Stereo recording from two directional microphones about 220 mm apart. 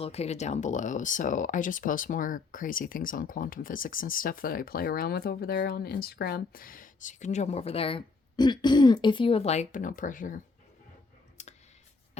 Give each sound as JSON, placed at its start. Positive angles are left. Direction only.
{"t": 0.0, "sound": "speech", "side_deg": 30}
{"t": 11.4, "sound": "clicking", "side_deg": 30}